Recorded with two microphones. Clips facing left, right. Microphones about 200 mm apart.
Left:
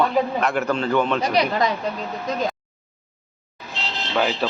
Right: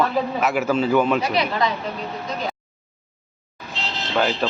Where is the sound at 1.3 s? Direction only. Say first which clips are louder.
Left 2 dB; 40° left (ahead or behind).